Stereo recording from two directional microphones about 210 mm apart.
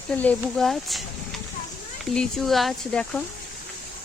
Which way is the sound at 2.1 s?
Centre (ahead or behind).